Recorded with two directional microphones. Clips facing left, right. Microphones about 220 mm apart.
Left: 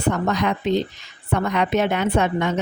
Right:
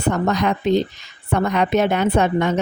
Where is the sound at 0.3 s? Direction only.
40° right (ahead or behind).